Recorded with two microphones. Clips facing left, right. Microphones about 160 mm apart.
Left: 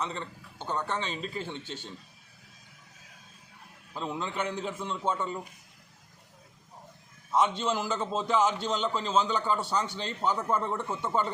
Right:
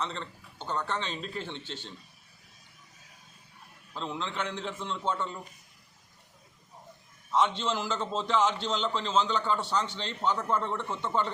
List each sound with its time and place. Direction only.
0.0 s a man's voice: 10° left (ahead or behind)
1.5 s a man's voice: 45° left (ahead or behind)
3.9 s a man's voice: 10° left (ahead or behind)
7.3 s a man's voice: 10° left (ahead or behind)